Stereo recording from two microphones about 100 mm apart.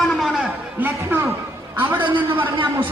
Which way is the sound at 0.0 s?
Centre (ahead or behind).